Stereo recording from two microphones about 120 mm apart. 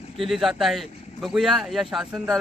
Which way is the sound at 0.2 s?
Centre (ahead or behind).